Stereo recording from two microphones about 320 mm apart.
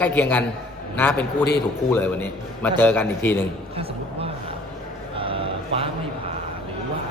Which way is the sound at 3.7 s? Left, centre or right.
Centre.